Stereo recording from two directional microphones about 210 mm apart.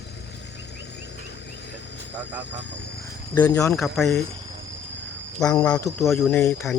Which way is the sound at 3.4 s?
15° left (ahead or behind).